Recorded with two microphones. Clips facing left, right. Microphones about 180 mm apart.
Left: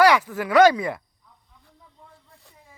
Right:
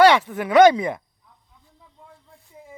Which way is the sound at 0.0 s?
25° right (ahead or behind).